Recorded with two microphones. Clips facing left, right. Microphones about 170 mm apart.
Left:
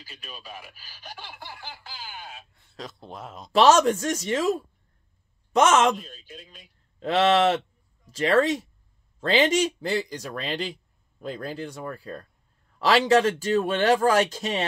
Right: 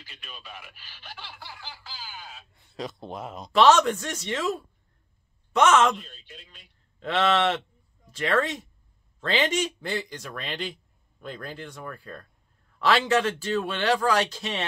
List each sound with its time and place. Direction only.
0.0 s a sound: 40° left (ahead or behind)
2.5 s speech: centre (ahead or behind)
3.5 s a man's voice: 40° left (ahead or behind)